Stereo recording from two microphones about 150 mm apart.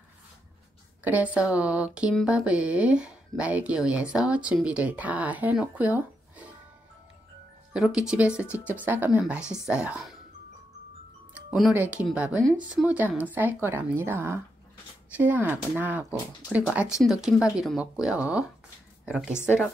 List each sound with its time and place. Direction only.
1.0 s speech: 10° right (ahead or behind)
7.7 s speech: 5° right (ahead or behind)
11.3 s music: centre (ahead or behind)
11.7 s speech: 10° right (ahead or behind)